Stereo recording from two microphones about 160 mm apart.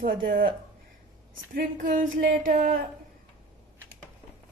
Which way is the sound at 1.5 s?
60° right (ahead or behind).